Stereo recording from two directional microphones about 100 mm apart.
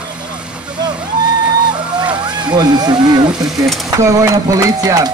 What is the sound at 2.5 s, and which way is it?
Speech, 45° right (ahead or behind).